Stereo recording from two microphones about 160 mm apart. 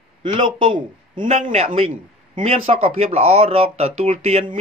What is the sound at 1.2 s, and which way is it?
Speech, 45° right (ahead or behind).